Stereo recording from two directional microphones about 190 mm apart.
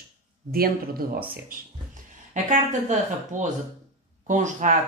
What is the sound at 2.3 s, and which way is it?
Speech, 40° right (ahead or behind).